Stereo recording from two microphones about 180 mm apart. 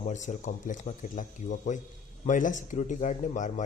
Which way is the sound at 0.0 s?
45° left (ahead or behind).